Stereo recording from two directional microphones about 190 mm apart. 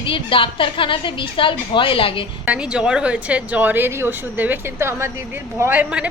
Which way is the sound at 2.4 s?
5° right (ahead or behind).